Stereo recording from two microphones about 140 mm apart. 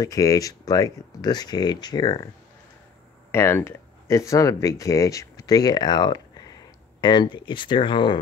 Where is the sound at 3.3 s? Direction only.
15° left (ahead or behind).